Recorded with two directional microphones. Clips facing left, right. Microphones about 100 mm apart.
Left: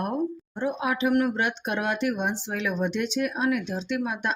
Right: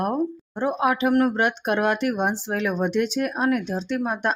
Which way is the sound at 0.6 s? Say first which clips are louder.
Right 4 dB; 55° right (ahead or behind).